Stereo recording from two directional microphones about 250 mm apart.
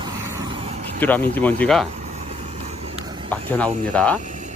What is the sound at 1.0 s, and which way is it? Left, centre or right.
Speech, centre.